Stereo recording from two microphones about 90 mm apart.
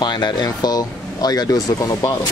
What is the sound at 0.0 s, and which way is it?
Speech, 55° left (ahead or behind).